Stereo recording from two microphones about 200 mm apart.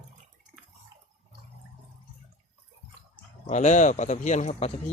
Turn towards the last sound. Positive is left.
turn(degrees=35)  # may be behind; listen again after turning